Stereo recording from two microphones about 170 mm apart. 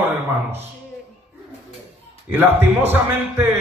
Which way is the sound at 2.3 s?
10° right (ahead or behind).